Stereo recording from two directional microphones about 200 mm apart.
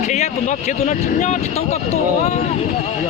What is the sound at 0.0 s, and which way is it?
Speech, 35° left (ahead or behind).